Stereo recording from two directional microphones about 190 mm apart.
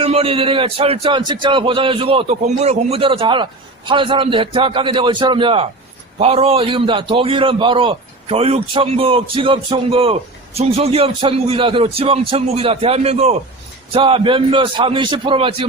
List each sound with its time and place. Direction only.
0.0 s a man's voice: 30° right (ahead or behind)